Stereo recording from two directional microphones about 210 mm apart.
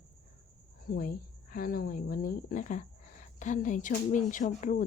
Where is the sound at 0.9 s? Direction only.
40° left (ahead or behind).